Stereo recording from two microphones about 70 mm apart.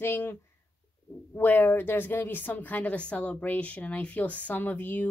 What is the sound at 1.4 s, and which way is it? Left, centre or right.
Speech, left.